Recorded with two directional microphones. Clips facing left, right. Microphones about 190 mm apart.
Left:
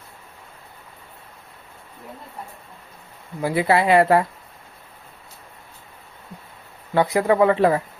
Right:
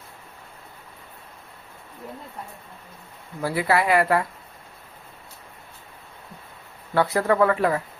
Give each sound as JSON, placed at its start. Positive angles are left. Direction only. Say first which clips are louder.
{"t": 3.4, "sound": "speech", "louder": "left 3 dB", "side_deg": 20}
{"t": 6.9, "sound": "speech", "louder": "left 3 dB", "side_deg": 15}